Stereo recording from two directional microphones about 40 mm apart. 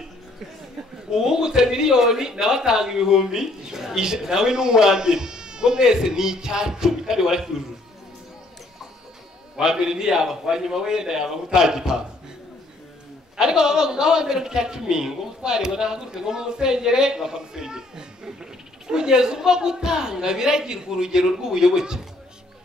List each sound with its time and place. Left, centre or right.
1.1 s a man's voice: centre
9.6 s a man's voice: centre
13.4 s a man's voice: centre